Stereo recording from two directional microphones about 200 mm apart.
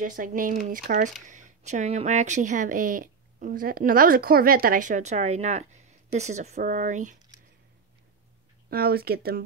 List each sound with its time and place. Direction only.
0.0 s speech: 40° right (ahead or behind)
8.6 s speech: 50° right (ahead or behind)